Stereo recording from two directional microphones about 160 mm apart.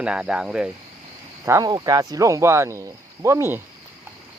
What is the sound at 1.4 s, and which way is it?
Speech, 20° right (ahead or behind).